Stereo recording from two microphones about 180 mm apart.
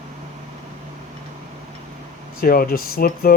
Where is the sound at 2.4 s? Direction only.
55° left (ahead or behind).